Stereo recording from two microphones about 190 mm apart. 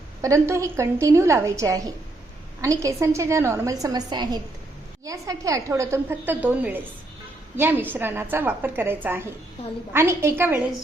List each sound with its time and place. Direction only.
0.2 s a woman's voice: 15° right (ahead or behind)